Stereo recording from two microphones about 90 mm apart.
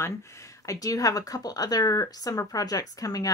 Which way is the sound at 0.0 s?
30° left (ahead or behind).